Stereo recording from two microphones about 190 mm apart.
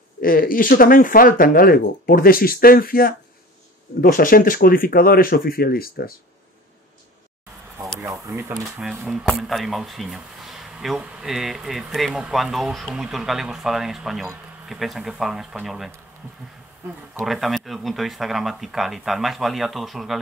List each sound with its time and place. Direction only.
0.2 s speech: 50° left (ahead or behind)
7.9 s a sound: 15° right (ahead or behind)
8.6 s speech: centre (ahead or behind)
17.3 s speech: centre (ahead or behind)